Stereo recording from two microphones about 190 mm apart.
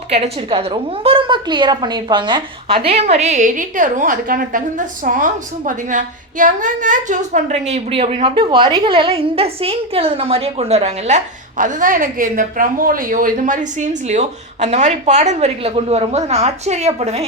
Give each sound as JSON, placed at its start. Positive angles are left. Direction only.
{"t": 0.1, "sound": "a woman's voice", "side_deg": -30}